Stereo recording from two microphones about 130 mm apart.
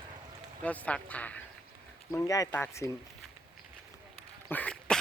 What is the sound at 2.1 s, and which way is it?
Speech, 25° left (ahead or behind).